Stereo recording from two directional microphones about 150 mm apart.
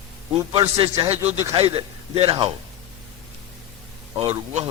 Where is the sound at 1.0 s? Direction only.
40° right (ahead or behind).